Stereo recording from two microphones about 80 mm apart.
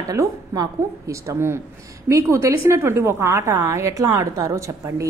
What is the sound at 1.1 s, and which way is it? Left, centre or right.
A woman's voice, right.